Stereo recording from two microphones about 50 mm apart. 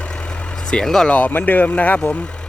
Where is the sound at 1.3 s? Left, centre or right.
Left.